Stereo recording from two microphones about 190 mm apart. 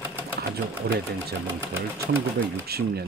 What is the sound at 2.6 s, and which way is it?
Speech, 55° right (ahead or behind).